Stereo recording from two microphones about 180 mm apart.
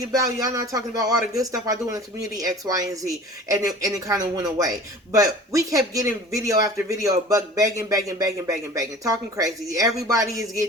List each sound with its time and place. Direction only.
0.0 s a man's voice: 20° right (ahead or behind)